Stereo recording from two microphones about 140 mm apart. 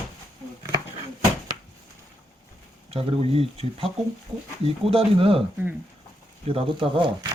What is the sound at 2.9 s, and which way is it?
Speech, 45° right (ahead or behind).